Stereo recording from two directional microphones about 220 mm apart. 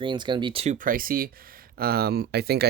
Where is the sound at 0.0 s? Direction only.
20° right (ahead or behind).